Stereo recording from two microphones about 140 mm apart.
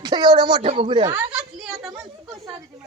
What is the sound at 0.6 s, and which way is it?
Speech, 45° right (ahead or behind).